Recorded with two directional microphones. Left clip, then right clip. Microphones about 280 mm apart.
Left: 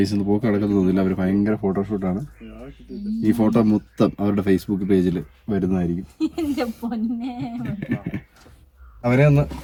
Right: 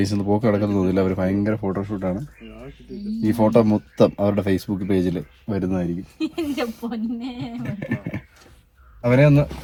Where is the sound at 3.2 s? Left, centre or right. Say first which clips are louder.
Right 2 dB; centre.